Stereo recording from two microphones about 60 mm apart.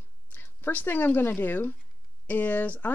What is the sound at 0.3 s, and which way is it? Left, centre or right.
Speech, left.